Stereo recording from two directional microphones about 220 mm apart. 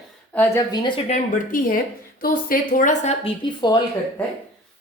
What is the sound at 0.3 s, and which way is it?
A woman's voice, 15° left (ahead or behind).